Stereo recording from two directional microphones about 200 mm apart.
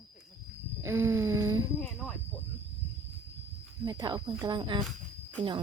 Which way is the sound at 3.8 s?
20° right (ahead or behind).